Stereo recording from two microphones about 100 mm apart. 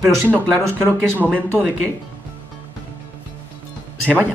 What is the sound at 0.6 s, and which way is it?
Speech, 25° right (ahead or behind).